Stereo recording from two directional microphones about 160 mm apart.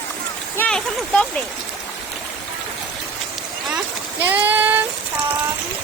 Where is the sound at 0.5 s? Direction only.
10° left (ahead or behind).